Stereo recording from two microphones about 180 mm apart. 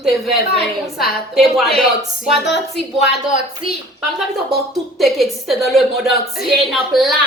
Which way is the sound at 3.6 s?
30° right (ahead or behind).